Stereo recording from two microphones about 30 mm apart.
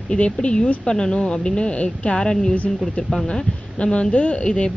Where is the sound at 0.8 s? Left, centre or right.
Left.